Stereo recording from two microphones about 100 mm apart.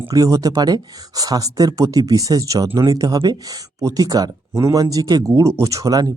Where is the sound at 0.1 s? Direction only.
35° right (ahead or behind).